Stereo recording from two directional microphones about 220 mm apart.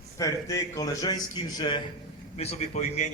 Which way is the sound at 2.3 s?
30° left (ahead or behind).